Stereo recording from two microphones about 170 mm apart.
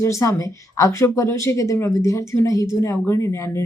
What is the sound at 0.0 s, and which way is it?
Speech, 15° left (ahead or behind).